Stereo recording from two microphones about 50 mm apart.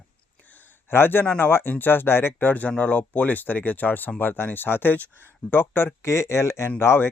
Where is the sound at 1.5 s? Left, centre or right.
Left.